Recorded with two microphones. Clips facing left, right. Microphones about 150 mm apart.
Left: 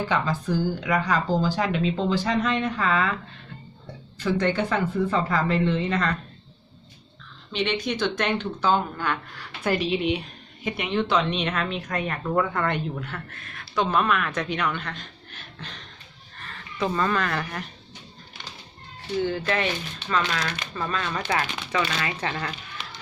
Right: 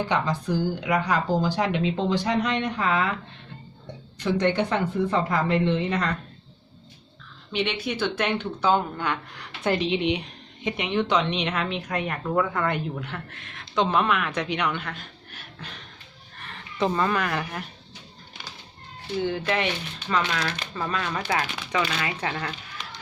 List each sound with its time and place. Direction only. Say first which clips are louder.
0.0 s speech: even; 15° right (ahead or behind)
4.2 s speech: right 1 dB; 15° right (ahead or behind)
7.5 s speech: left 1 dB; 10° right (ahead or behind)
13.1 s speech: even; 15° right (ahead or behind)
20.1 s speech: even; 10° right (ahead or behind)